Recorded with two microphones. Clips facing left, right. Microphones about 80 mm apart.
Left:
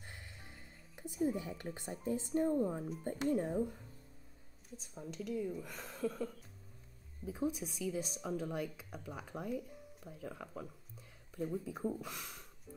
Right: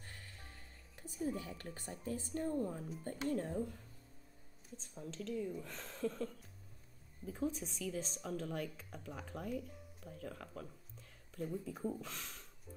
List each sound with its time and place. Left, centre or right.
0.0 s a woman's voice: centre